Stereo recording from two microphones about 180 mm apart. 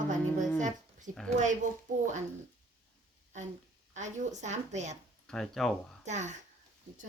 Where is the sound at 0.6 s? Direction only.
45° right (ahead or behind).